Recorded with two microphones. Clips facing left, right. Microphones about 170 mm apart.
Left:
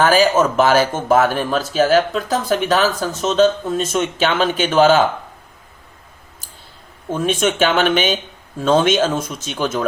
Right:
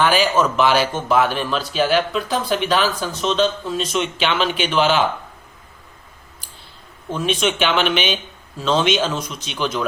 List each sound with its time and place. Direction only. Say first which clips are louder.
0.0 s speech: left 3 dB; 45° left (ahead or behind)
7.1 s speech: left 3 dB; 50° left (ahead or behind)